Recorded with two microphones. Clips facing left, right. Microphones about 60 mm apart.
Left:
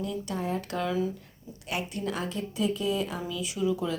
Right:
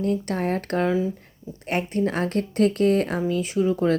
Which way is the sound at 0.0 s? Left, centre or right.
Right.